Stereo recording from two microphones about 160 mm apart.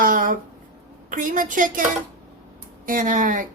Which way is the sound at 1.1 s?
55° right (ahead or behind).